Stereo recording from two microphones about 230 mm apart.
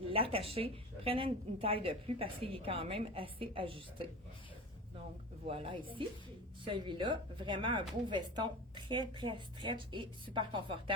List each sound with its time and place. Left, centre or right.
0.1 s speech: right
5.5 s speech: right